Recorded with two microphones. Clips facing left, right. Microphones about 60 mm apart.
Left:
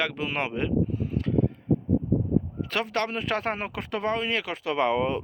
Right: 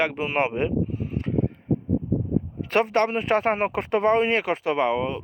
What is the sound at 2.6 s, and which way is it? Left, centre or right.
Speech, right.